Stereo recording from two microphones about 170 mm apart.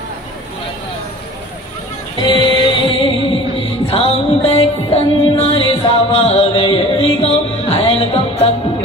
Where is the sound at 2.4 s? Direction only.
30° left (ahead or behind).